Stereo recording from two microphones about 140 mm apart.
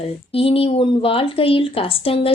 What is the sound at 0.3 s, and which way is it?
A woman's voice, 40° left (ahead or behind).